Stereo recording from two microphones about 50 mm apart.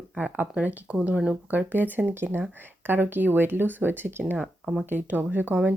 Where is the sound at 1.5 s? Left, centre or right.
Right.